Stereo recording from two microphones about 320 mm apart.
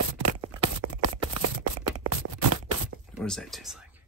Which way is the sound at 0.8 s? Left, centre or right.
Right.